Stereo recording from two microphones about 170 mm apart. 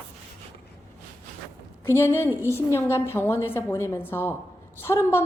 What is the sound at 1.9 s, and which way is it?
A woman's voice, 15° left (ahead or behind).